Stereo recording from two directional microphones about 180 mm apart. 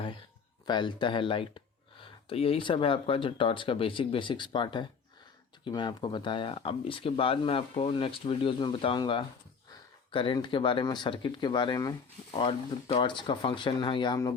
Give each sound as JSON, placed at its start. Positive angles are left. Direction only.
{"t": 0.7, "sound": "speech", "side_deg": 25}